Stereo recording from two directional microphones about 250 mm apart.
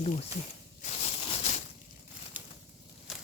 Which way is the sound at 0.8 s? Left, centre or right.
Left.